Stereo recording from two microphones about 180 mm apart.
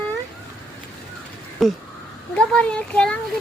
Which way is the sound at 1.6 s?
Centre (ahead or behind).